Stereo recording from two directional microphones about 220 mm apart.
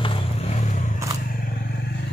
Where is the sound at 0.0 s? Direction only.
25° left (ahead or behind).